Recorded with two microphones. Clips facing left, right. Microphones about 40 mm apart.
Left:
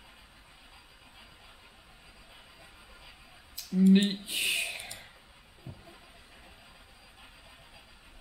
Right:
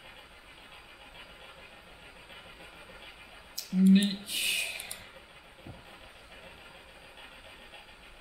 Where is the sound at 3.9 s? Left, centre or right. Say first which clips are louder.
Even; centre.